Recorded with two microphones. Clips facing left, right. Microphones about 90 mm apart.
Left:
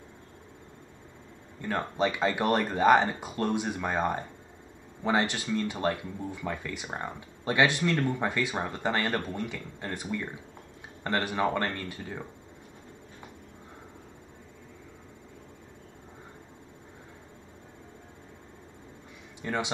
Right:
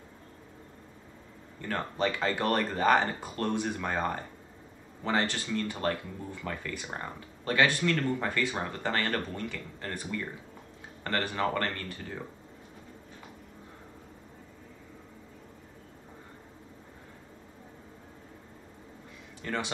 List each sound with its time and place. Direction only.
1.6 s speech: 15° left (ahead or behind)
19.4 s speech: 15° left (ahead or behind)